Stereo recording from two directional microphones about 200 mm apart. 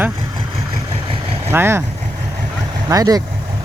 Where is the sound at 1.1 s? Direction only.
30° right (ahead or behind).